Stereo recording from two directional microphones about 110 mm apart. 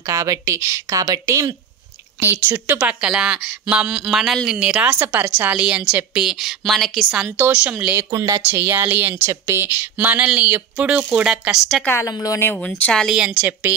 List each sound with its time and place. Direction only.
0.1 s speech: 30° right (ahead or behind)
2.1 s a woman's voice: 20° right (ahead or behind); by 7.2 s centre (ahead or behind)
7.3 s a woman's voice: 15° right (ahead or behind)
7.9 s speech: 30° right (ahead or behind)
8.5 s a woman's voice: 20° right (ahead or behind)
11.8 s speech: 20° left (ahead or behind)
12.8 s speech: 5° left (ahead or behind)
13.2 s a woman's voice: 15° right (ahead or behind)